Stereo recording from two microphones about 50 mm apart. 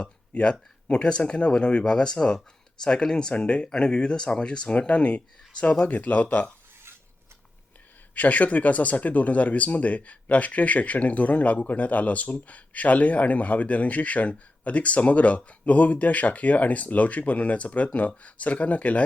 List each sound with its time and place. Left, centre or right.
0.0 s speech: left
8.1 s speech: left